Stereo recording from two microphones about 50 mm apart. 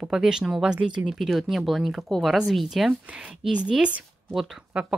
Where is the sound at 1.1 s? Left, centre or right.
Centre.